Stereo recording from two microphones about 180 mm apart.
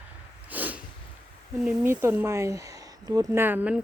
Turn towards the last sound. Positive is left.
turn(degrees=-10)  # may be behind; listen again after turning